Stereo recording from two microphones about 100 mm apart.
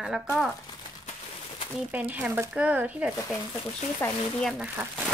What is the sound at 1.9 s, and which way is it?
Speech, 15° right (ahead or behind).